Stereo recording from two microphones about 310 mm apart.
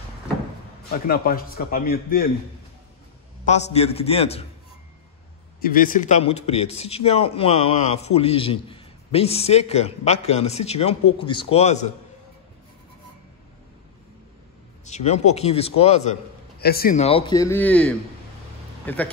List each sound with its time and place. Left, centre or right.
1.0 s a man's voice: left
3.4 s a man's voice: left
5.6 s a man's voice: left
14.9 s a man's voice: left; by 19.0 s centre